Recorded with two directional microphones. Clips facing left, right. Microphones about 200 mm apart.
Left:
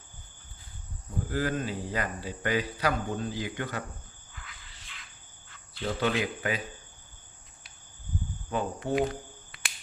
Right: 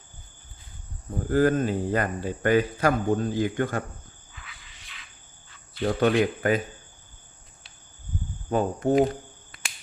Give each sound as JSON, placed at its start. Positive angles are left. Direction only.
{"t": 1.3, "sound": "speech", "side_deg": -50}
{"t": 4.6, "sound": "a sound", "side_deg": -15}
{"t": 5.8, "sound": "speech", "side_deg": -55}
{"t": 8.4, "sound": "speech", "side_deg": -45}